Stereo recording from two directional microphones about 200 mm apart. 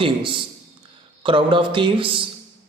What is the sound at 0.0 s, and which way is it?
A man's voice, 25° right (ahead or behind).